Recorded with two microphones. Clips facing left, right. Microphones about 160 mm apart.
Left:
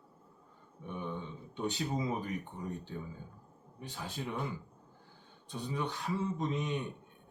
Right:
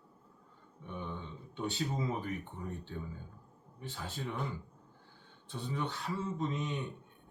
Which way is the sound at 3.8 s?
15° left (ahead or behind).